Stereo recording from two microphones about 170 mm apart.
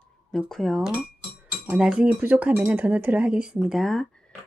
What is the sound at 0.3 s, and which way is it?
Speech, 5° left (ahead or behind).